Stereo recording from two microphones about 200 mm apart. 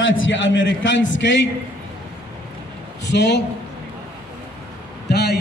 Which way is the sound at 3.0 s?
60° left (ahead or behind).